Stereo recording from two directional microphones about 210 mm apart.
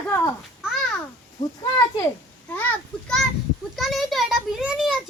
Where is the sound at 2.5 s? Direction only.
5° left (ahead or behind).